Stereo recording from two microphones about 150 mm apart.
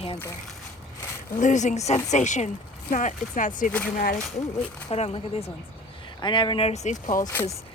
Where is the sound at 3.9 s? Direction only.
70° left (ahead or behind).